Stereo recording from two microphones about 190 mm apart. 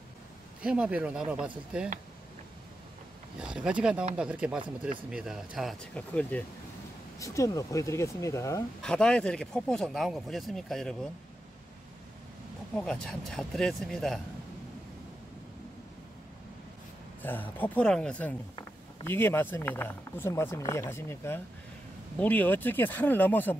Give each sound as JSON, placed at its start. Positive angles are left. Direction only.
{"t": 0.6, "sound": "speech", "side_deg": -5}
{"t": 3.3, "sound": "speech", "side_deg": -5}
{"t": 8.8, "sound": "speech", "side_deg": 5}
{"t": 12.7, "sound": "speech", "side_deg": 5}
{"t": 17.2, "sound": "speech", "side_deg": 10}